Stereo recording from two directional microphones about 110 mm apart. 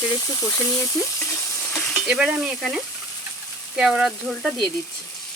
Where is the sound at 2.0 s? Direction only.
10° right (ahead or behind).